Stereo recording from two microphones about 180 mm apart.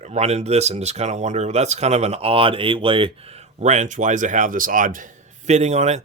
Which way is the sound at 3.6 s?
40° right (ahead or behind).